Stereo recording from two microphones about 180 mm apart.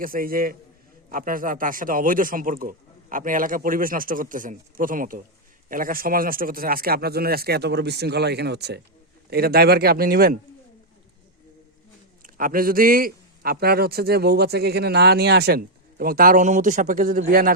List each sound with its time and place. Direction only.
0.0 s a man's voice: 50° right (ahead or behind)
12.2 s a man's voice: 50° right (ahead or behind)